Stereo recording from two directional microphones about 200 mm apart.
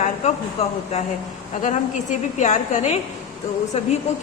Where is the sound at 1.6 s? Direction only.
35° left (ahead or behind).